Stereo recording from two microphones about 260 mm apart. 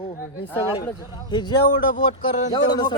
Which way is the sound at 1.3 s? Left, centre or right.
Centre.